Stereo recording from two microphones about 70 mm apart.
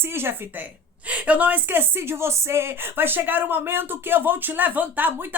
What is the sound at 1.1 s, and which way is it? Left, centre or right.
A woman's voice, centre.